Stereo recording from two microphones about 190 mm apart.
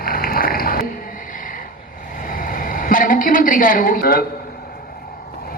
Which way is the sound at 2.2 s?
45° left (ahead or behind).